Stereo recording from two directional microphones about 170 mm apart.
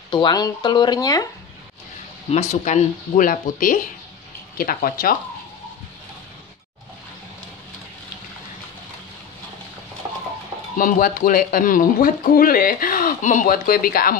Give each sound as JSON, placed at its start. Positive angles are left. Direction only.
{"t": 0.1, "sound": "speech", "side_deg": 25}
{"t": 2.3, "sound": "speech", "side_deg": 45}
{"t": 10.8, "sound": "speech", "side_deg": 55}